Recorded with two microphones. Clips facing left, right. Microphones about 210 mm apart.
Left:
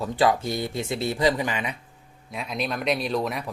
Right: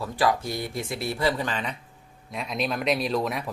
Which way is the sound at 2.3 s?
Centre (ahead or behind).